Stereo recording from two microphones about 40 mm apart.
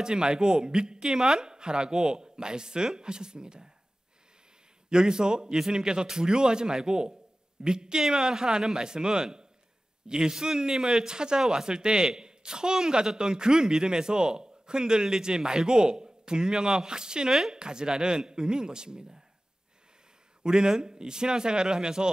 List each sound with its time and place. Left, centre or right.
0.0 s speech: centre
4.8 s speech: centre
20.4 s speech: centre